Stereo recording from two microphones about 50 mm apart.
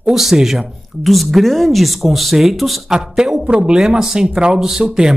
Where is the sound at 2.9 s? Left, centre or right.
Centre.